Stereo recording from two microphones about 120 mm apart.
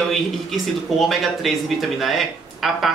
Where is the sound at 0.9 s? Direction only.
Centre (ahead or behind).